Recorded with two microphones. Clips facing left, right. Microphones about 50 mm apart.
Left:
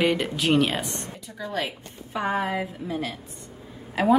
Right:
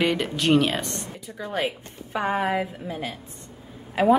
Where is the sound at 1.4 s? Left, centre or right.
Right.